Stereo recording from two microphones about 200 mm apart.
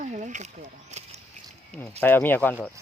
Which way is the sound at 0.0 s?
40° right (ahead or behind).